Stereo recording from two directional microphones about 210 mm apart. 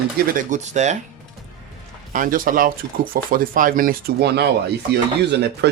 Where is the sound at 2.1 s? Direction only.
40° right (ahead or behind).